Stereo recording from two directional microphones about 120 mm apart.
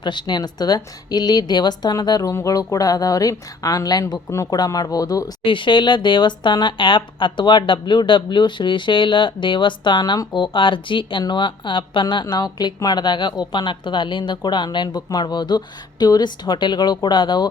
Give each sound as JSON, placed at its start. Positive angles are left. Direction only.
{"t": 0.0, "sound": "a woman's voice", "side_deg": 40}
{"t": 5.5, "sound": "speech", "side_deg": 40}